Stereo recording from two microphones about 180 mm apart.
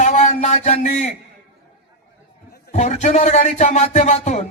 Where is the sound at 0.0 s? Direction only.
40° left (ahead or behind).